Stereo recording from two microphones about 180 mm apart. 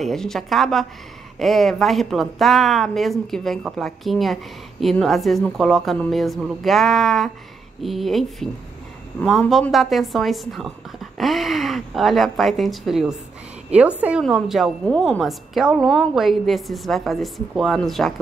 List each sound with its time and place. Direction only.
0.0 s a woman's voice: centre (ahead or behind)